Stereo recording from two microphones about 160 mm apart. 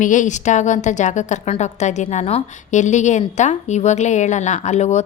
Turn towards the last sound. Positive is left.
turn(degrees=45)  # may be behind; listen again after turning